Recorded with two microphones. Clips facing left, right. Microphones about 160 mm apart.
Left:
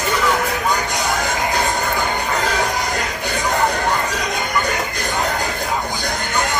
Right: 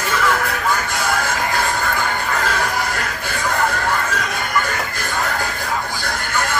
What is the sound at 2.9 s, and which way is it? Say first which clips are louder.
Music: left 2 dB; 20° left (ahead or behind).